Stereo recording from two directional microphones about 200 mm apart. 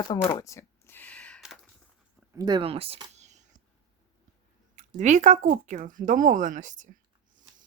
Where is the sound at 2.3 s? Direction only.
20° right (ahead or behind).